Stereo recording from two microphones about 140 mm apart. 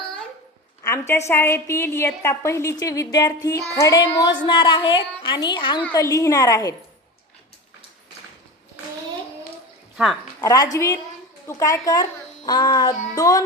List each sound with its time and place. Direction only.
0.8 s a woman's voice: 20° left (ahead or behind)
5.9 s a woman's voice: 25° left (ahead or behind)
10.4 s a woman's voice: 25° left (ahead or behind)